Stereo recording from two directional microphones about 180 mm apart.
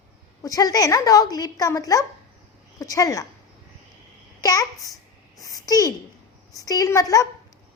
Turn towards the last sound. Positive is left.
turn(degrees=20)  # may be behind; listen again after turning